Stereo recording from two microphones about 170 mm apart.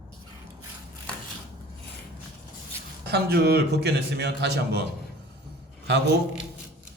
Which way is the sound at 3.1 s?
70° right (ahead or behind).